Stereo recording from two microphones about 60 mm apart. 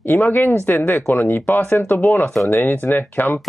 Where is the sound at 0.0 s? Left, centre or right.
Left.